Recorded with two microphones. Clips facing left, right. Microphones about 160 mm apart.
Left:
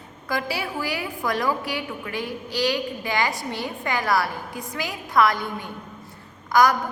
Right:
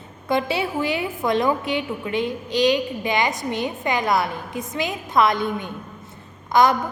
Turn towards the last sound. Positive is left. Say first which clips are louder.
# right 1 dB
turn(degrees=-25)  # may be behind; listen again after turning